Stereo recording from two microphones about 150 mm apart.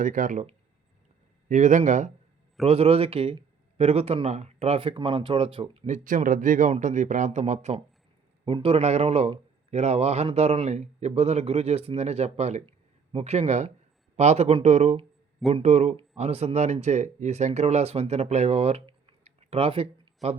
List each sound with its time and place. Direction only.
0.0 s speech: 60° right (ahead or behind)
2.6 s speech: 40° right (ahead or behind)
5.8 s speech: 55° right (ahead or behind)
8.4 s a man's voice: 35° right (ahead or behind)